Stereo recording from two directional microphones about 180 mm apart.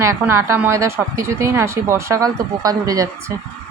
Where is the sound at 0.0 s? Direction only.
15° right (ahead or behind).